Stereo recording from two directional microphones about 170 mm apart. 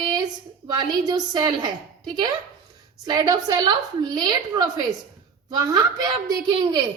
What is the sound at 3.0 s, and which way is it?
A woman's voice, 20° right (ahead or behind).